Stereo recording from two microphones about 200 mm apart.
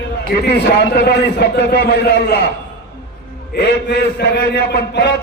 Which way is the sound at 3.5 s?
55° left (ahead or behind).